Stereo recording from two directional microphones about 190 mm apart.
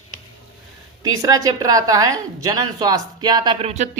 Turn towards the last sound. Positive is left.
turn(degrees=-35)  # may be behind; listen again after turning